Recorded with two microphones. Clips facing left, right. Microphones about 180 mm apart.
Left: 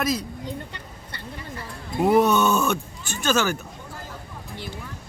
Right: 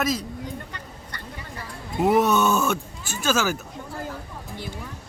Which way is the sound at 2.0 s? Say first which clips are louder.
Left 1 dB; centre (ahead or behind).